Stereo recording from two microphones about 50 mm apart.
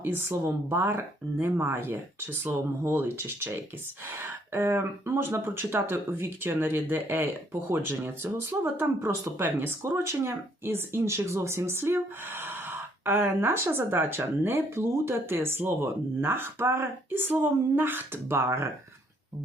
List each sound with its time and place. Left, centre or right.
0.0 s speech: right
7.5 s speech: right
9.0 s speech: right
9.6 s speech: right
17.2 s speech: right
18.3 s speech: right